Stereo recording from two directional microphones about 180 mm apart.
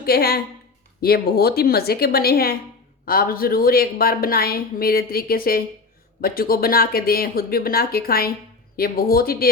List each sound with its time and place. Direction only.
0.0 s a woman's voice: 60° left (ahead or behind)